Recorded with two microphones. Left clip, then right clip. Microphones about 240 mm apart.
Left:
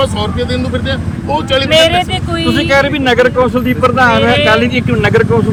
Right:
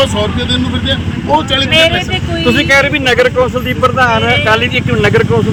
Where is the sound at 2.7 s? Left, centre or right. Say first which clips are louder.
Even; right.